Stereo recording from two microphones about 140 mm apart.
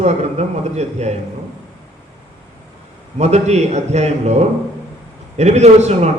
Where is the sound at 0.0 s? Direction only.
50° right (ahead or behind).